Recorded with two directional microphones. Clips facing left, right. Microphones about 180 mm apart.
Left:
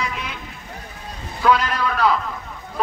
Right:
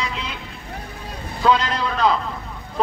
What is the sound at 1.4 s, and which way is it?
Speech, 20° right (ahead or behind).